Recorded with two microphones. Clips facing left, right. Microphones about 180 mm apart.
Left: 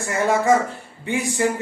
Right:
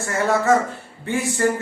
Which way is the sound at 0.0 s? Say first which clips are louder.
Even; 15° left (ahead or behind).